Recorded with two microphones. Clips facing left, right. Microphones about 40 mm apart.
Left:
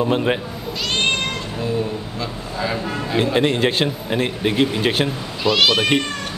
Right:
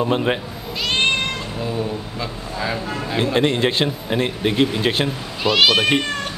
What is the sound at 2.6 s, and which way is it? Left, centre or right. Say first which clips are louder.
A man's voice: left 1 dB; centre.